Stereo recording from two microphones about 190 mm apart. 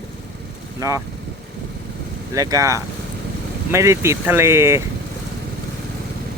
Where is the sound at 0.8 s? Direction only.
15° right (ahead or behind).